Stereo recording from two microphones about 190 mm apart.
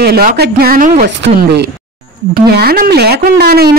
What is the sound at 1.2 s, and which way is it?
Speech, 60° right (ahead or behind).